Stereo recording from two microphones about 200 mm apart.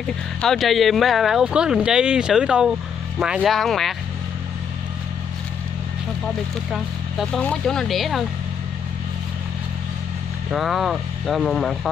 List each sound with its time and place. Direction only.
0.4 s speech: centre (ahead or behind)
6.7 s speech: centre (ahead or behind)
10.5 s speech: centre (ahead or behind)